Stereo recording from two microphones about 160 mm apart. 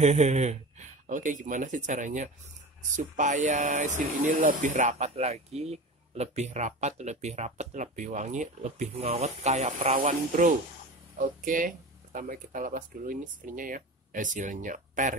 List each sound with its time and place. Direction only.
0.0 s speech: 45° right (ahead or behind)